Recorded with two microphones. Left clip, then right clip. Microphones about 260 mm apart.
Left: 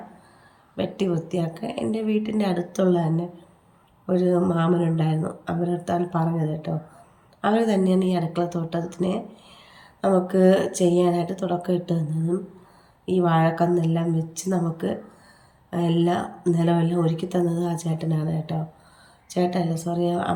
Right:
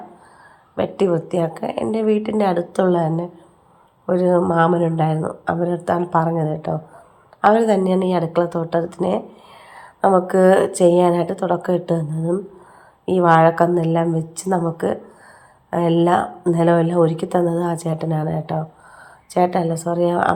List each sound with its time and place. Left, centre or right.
0.8 s speech: centre
13.1 s speech: centre
16.0 s speech: centre